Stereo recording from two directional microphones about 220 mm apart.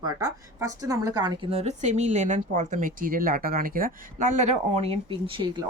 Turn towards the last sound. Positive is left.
turn(degrees=-20)  # may be behind; listen again after turning